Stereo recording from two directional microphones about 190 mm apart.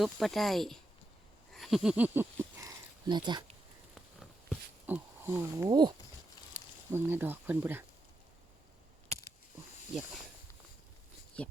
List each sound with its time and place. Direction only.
0.0 s speech: centre (ahead or behind)
1.5 s a sound: centre (ahead or behind); by 3.5 s 25° right (ahead or behind)
4.2 s a sound: 5° right (ahead or behind)
5.6 s speech: 20° right (ahead or behind)
6.9 s speech: 10° right (ahead or behind)
11.3 s speech: 5° left (ahead or behind)